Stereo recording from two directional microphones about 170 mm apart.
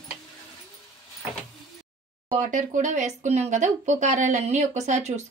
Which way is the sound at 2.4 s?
45° right (ahead or behind).